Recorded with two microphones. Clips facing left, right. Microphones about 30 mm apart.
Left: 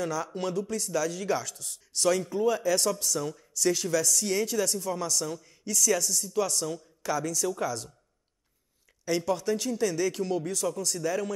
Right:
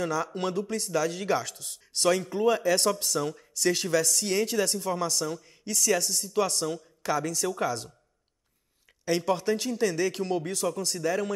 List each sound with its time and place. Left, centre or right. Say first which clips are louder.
0.0 s speech: right 2 dB; right
5.2 s speech: right 2 dB; centre
5.7 s speech: even; right
9.0 s speech: right 2 dB; right